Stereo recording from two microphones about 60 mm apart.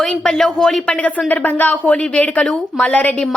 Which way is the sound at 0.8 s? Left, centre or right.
Left.